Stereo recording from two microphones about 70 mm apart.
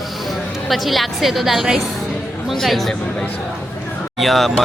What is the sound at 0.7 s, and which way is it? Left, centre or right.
A woman's voice, centre.